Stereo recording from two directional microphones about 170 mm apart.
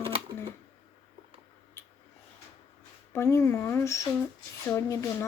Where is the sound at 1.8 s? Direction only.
15° left (ahead or behind).